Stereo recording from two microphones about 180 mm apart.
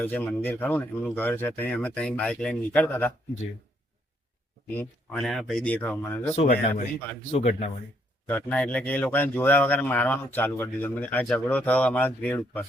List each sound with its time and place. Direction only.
0.0 s speech: 10° left (ahead or behind)
4.7 s speech: 10° left (ahead or behind)
6.3 s speech: 40° left (ahead or behind)
8.3 s speech: 10° left (ahead or behind)